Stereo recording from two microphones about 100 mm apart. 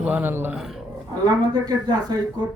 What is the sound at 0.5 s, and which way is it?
Speech, 5° right (ahead or behind).